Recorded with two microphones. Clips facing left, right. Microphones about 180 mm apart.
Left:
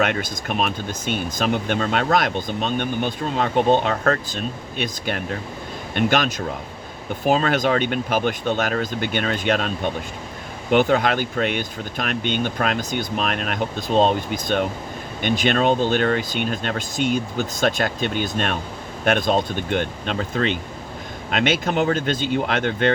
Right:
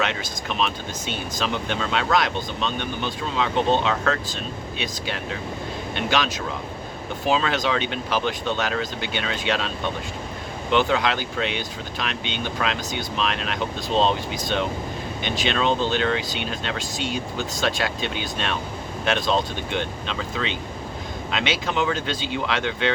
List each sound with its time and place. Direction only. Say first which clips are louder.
0.0 s speech: left 4 dB; 55° left (ahead or behind)